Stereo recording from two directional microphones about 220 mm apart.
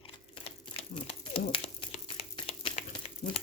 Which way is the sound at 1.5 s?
25° left (ahead or behind).